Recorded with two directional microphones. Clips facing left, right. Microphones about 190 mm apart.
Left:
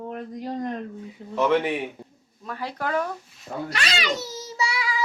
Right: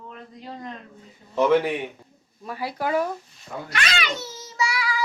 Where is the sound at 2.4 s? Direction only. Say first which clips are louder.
Right 2 dB; 10° right (ahead or behind).